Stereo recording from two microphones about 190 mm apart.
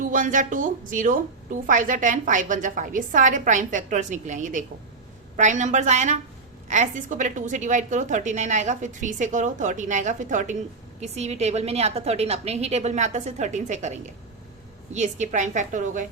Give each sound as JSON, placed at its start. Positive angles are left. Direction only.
{"t": 0.0, "sound": "a woman's voice", "side_deg": -45}